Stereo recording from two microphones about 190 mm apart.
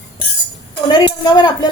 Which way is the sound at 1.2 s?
25° left (ahead or behind).